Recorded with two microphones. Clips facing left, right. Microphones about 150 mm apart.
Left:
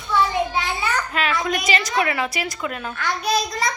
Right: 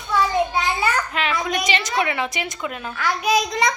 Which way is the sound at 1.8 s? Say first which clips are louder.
Left 1 dB; 20° right (ahead or behind).